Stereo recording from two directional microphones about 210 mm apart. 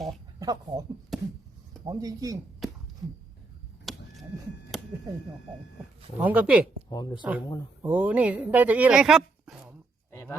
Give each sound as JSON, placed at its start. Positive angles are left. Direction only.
{"t": 0.3, "sound": "speech", "side_deg": -15}
{"t": 1.1, "sound": "a sound", "side_deg": 0}
{"t": 1.8, "sound": "a woman's voice", "side_deg": -15}
{"t": 3.9, "sound": "vehicle", "side_deg": 0}
{"t": 6.1, "sound": "a woman's voice", "side_deg": -5}
{"t": 6.9, "sound": "speech", "side_deg": 20}
{"t": 7.8, "sound": "a woman's voice", "side_deg": -10}
{"t": 10.1, "sound": "a sound", "side_deg": 15}